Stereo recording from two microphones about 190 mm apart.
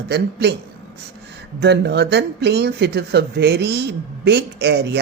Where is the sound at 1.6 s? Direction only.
65° right (ahead or behind).